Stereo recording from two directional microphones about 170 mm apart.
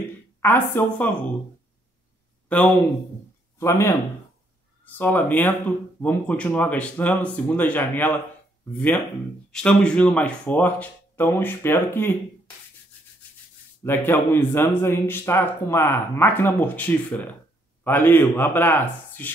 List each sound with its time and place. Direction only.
0.4 s a man's voice: 10° left (ahead or behind)
3.5 s speech: 15° left (ahead or behind)
4.9 s a man's voice: 10° left (ahead or behind)
13.8 s a man's voice: 10° left (ahead or behind)